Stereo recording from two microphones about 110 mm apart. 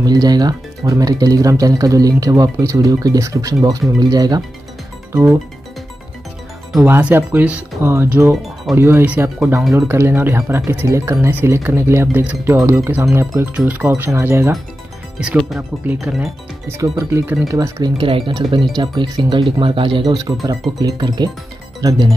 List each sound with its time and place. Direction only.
0.0 s speech: 35° right (ahead or behind)
5.1 s speech: 20° right (ahead or behind)
6.9 s speech: 15° right (ahead or behind)
13.5 s speech: 15° right (ahead or behind)
15.1 s speech: 5° right (ahead or behind)
16.6 s speech: 25° right (ahead or behind)
17.8 s speech: 50° right (ahead or behind)
19.6 s speech: 50° right (ahead or behind)
20.1 s speech: 30° right (ahead or behind)